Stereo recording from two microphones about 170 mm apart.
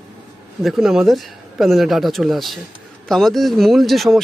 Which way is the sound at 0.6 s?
Centre (ahead or behind).